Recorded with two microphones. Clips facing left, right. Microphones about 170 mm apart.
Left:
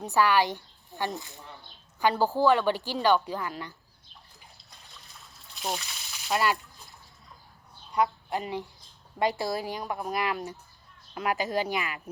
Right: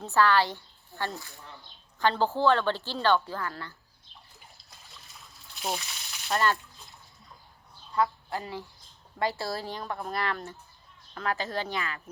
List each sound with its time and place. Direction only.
0.0 s a woman's voice: 15° left (ahead or behind)
5.4 s a sound: centre (ahead or behind)
6.3 s a woman's voice: 10° left (ahead or behind)
7.9 s a woman's voice: 20° left (ahead or behind)